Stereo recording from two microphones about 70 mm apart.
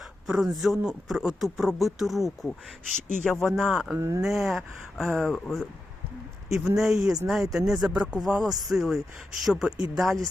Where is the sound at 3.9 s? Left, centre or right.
Right.